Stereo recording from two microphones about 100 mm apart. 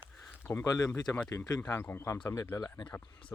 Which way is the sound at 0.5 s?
35° left (ahead or behind).